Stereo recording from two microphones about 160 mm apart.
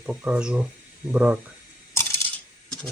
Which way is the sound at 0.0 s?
10° right (ahead or behind).